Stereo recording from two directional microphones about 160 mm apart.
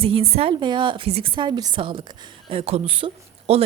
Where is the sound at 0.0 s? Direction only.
35° right (ahead or behind).